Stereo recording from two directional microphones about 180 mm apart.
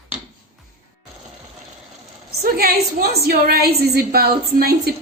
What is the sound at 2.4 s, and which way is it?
A woman's voice, 55° right (ahead or behind).